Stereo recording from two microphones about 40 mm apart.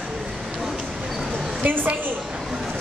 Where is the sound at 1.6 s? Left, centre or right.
Right.